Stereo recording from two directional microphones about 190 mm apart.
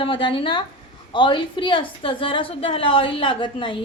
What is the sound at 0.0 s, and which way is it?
A woman's voice, 25° left (ahead or behind).